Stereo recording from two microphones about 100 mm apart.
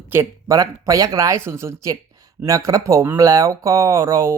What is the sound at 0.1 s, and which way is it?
Speech, 25° right (ahead or behind).